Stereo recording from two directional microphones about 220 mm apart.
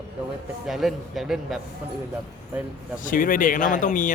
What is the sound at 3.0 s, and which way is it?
Speech, 40° left (ahead or behind).